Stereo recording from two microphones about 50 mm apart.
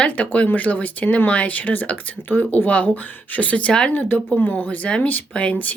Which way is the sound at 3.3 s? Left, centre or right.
Left.